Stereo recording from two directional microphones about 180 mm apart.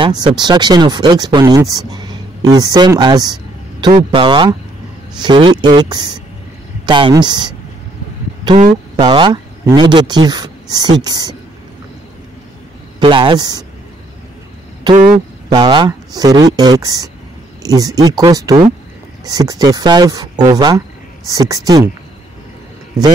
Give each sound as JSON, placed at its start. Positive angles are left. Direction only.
{"t": 0.0, "sound": "speech", "side_deg": -25}
{"t": 8.9, "sound": "speech", "side_deg": -25}
{"t": 13.0, "sound": "speech", "side_deg": -25}
{"t": 15.5, "sound": "speech", "side_deg": -25}